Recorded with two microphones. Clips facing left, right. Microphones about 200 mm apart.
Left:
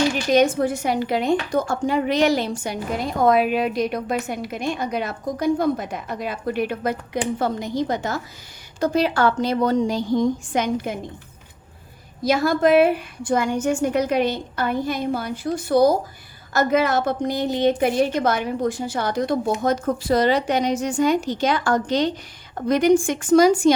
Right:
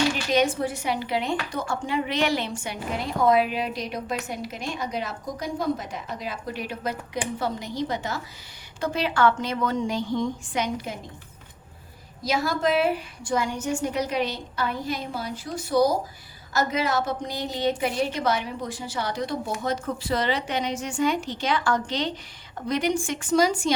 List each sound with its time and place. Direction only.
0.3 s a woman's voice: 45° left (ahead or behind)
12.2 s a woman's voice: 55° left (ahead or behind)